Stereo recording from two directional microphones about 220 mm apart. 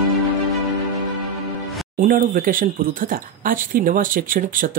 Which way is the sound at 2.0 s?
40° right (ahead or behind).